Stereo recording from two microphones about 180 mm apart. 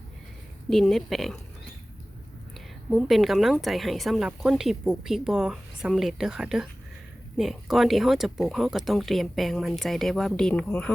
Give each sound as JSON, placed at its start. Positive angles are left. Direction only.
{"t": 0.7, "sound": "a woman's voice", "side_deg": 0}
{"t": 2.9, "sound": "a woman's voice", "side_deg": 0}